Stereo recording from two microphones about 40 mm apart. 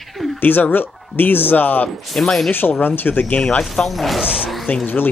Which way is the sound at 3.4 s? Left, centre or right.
Left.